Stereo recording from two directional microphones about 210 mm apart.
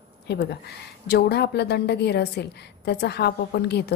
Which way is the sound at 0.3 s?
50° left (ahead or behind).